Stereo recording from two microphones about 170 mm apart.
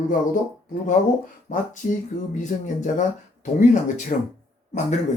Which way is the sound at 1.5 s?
40° left (ahead or behind).